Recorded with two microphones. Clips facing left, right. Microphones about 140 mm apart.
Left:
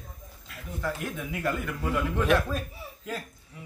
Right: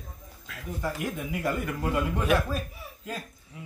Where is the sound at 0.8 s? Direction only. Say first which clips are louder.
Right 1 dB; 15° right (ahead or behind).